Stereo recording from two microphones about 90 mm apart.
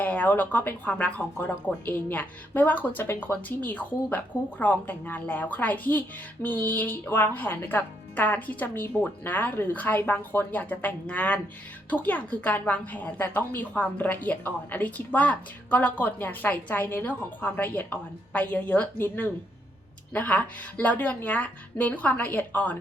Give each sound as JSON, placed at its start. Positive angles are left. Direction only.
{"t": 0.0, "sound": "a woman's voice", "side_deg": 15}